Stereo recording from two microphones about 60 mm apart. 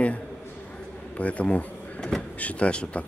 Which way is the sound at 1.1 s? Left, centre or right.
Left.